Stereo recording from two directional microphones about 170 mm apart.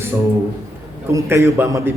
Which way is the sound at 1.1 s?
15° right (ahead or behind).